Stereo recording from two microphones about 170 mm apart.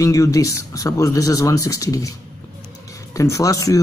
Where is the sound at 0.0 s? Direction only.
20° left (ahead or behind).